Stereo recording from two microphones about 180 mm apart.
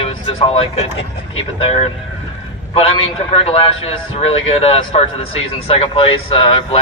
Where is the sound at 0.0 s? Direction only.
30° left (ahead or behind).